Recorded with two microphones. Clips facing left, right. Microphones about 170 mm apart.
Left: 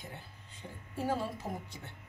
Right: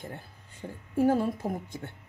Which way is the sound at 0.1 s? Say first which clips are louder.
Right 6 dB; 50° right (ahead or behind).